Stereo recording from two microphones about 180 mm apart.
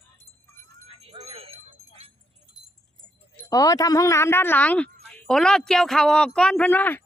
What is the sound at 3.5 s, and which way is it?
Speech, 20° left (ahead or behind).